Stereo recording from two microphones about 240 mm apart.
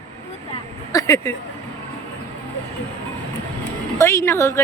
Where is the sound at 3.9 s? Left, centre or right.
Centre.